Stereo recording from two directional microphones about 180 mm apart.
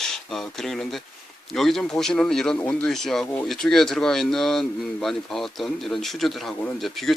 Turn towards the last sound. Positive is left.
turn(degrees=0)  # may be behind; listen again after turning